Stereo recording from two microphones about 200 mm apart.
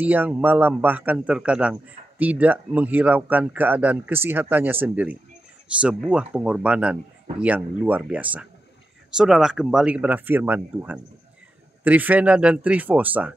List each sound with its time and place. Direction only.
0.0 s a man's voice: 10° right (ahead or behind)